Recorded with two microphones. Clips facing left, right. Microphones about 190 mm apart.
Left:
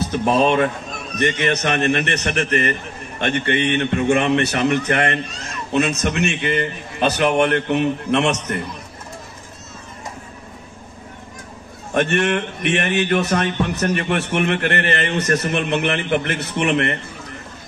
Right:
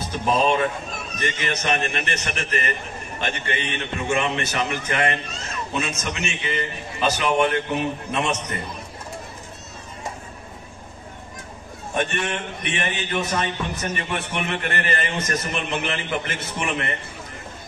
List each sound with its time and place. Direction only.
0.0 s a man's voice: 65° left (ahead or behind)
11.9 s a man's voice: 70° left (ahead or behind)